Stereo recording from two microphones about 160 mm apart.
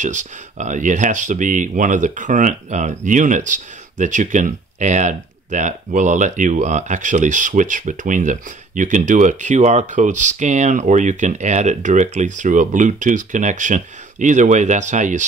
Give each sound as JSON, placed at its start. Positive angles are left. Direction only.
{"t": 0.0, "sound": "speech", "side_deg": -50}